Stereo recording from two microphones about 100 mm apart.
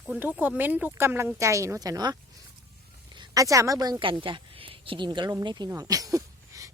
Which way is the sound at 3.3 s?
35° right (ahead or behind).